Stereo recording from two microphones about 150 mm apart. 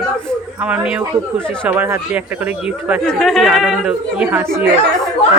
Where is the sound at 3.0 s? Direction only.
Centre (ahead or behind).